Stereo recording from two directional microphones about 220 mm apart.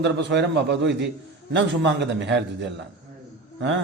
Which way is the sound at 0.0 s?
55° right (ahead or behind).